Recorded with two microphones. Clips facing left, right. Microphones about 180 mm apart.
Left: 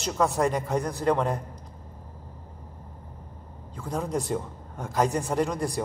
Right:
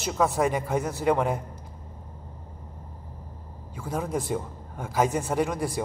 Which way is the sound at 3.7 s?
5° right (ahead or behind).